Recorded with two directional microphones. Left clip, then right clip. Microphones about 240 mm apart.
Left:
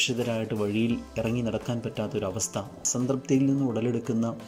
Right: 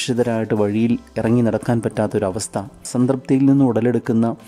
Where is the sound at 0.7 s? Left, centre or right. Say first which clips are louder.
Right 8 dB; right.